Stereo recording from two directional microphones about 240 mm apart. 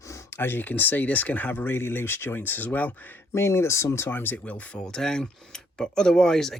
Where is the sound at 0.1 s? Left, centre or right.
Centre.